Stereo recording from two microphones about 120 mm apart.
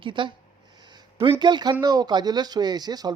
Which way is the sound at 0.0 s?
45° right (ahead or behind).